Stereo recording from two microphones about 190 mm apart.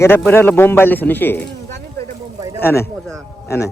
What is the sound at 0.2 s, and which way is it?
A man's voice, 10° left (ahead or behind).